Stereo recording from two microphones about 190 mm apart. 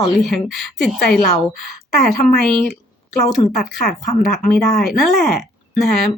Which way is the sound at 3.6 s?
45° left (ahead or behind).